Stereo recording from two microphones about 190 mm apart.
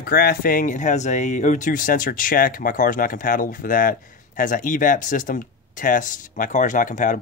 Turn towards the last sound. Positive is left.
turn(degrees=40)  # may be behind; listen again after turning